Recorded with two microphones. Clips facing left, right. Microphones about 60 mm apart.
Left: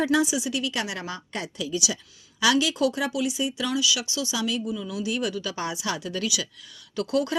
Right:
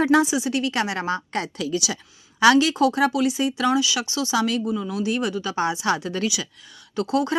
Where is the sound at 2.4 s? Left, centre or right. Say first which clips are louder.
Right 6 dB; right.